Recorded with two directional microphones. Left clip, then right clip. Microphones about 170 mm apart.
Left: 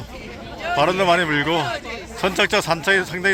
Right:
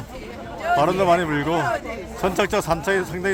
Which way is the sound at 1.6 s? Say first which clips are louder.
Right 1 dB; 25° right (ahead or behind).